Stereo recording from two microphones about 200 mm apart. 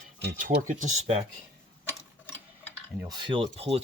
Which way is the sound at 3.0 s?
25° right (ahead or behind).